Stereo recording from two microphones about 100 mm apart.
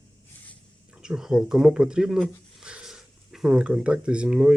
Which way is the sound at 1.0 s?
5° right (ahead or behind).